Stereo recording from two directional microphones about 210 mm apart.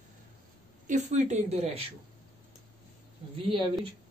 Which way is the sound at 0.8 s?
35° right (ahead or behind).